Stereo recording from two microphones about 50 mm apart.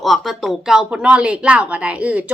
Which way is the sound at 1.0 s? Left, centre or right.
Centre.